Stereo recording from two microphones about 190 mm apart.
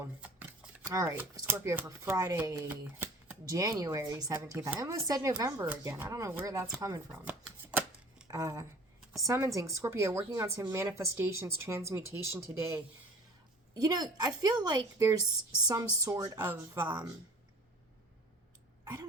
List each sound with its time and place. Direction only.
0.9 s speech: 15° right (ahead or behind)
6.7 s shuffling cards: 15° right (ahead or behind)
8.3 s speech: 15° right (ahead or behind)
13.8 s a woman's voice: 20° right (ahead or behind)